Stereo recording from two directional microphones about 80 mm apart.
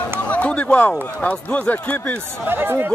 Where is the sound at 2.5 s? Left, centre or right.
Right.